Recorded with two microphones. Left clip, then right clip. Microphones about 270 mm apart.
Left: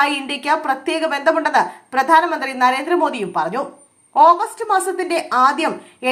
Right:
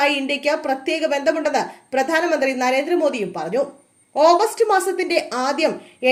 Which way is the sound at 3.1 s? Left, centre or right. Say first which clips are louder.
Left 1 dB; centre.